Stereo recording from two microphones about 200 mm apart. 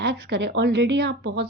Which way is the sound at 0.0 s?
60° right (ahead or behind).